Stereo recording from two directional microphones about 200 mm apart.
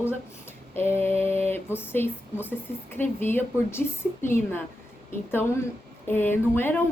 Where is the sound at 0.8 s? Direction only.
10° left (ahead or behind).